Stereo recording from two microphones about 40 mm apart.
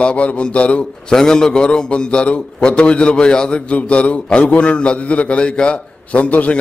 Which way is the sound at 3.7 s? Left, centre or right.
Left.